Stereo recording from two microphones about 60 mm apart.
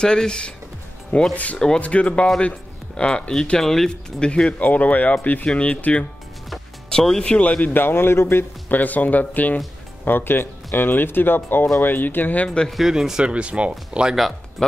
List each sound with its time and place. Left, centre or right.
0.0 s speech: centre
1.3 s speech: left; by 4.3 s centre
4.5 s speech: left
6.9 s speech: centre
7.3 s speech: left
7.7 s speech: left
12.4 s speech: centre
12.7 s speech: centre